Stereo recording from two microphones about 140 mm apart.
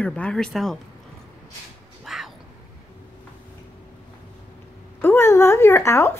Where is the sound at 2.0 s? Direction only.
Centre (ahead or behind).